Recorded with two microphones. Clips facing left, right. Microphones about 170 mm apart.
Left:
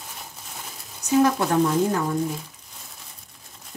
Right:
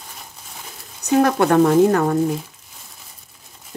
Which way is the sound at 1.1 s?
65° right (ahead or behind).